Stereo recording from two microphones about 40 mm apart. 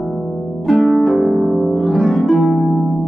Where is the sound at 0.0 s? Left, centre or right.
Centre.